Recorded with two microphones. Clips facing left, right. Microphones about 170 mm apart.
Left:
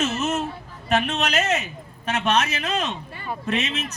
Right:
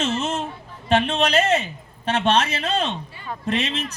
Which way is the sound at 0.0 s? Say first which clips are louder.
Even; 30° right (ahead or behind).